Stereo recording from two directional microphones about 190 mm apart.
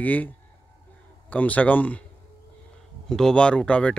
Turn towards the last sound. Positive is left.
turn(degrees=5)  # may be behind; listen again after turning